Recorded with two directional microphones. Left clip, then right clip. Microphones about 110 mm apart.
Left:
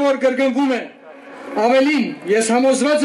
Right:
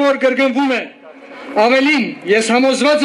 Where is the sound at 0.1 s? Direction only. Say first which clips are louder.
Right 3 dB; 30° right (ahead or behind).